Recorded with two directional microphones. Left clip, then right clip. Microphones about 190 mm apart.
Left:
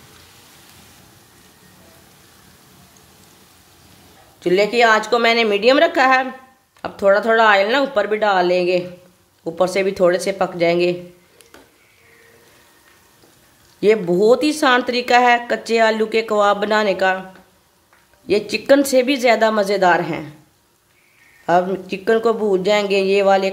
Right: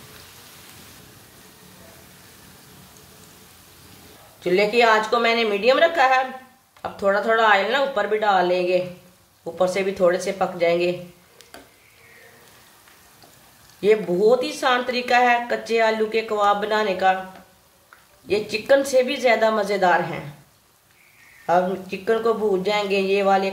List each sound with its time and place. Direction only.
4.4 s speech: 55° left (ahead or behind)
13.7 s a woman's voice: 55° left (ahead or behind)
18.2 s a woman's voice: 55° left (ahead or behind)
21.5 s speech: 55° left (ahead or behind)